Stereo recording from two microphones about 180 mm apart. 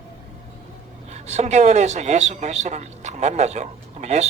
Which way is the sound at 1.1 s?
40° right (ahead or behind).